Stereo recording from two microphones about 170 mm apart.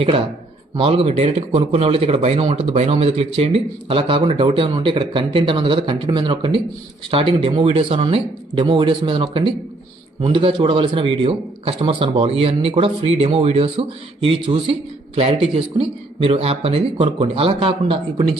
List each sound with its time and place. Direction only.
0.8 s a man's voice: 35° right (ahead or behind)